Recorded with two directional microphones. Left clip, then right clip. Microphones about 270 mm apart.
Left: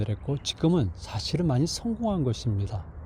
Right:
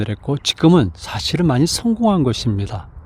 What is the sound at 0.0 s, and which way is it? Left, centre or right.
Speech, right.